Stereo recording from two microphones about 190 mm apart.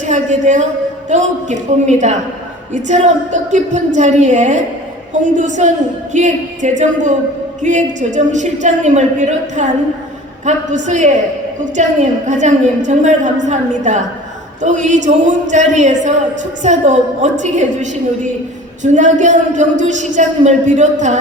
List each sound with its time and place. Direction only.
0.0 s a man's voice: 40° right (ahead or behind)